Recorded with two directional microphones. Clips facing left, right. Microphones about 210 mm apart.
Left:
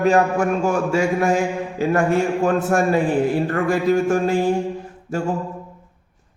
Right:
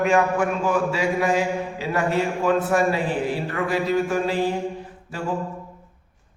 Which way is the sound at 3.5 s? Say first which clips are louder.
Left 5 dB; 50° left (ahead or behind).